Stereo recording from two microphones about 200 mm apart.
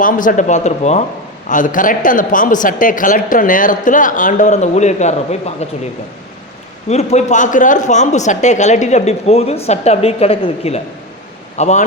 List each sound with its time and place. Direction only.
0.0 s speech: 40° left (ahead or behind)
6.8 s speech: 35° left (ahead or behind)